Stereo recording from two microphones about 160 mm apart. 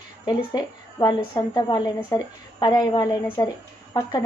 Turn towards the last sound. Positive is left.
turn(degrees=25)  # may be behind; listen again after turning